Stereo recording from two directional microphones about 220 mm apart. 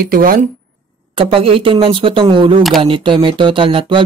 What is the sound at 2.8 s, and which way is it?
Speech, 20° right (ahead or behind).